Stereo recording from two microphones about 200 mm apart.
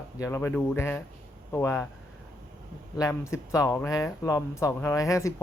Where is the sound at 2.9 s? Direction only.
15° left (ahead or behind).